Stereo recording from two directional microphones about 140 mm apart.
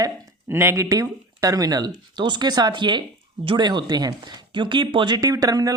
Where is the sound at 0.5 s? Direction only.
20° right (ahead or behind).